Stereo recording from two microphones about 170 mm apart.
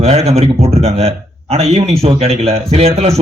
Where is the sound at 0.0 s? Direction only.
40° right (ahead or behind).